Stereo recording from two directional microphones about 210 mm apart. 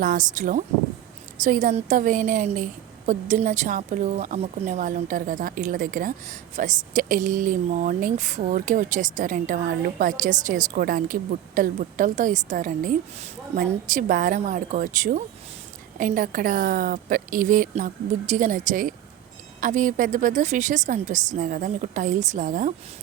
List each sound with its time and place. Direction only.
0.0 s a woman's voice: 40° right (ahead or behind)